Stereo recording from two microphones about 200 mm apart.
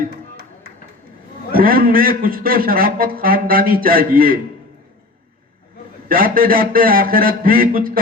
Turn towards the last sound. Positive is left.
turn(degrees=-45)  # may be behind; listen again after turning